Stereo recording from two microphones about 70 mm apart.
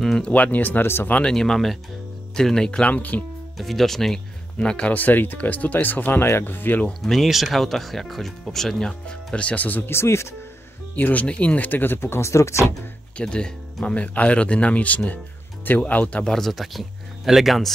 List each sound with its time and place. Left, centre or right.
0.2 s speech: left
1.1 s speech: centre
2.9 s speech: left
3.5 s speech: centre
4.6 s speech: centre
6.9 s speech: centre; by 10.2 s left
11.0 s speech: left
13.2 s speech: centre
16.3 s speech: centre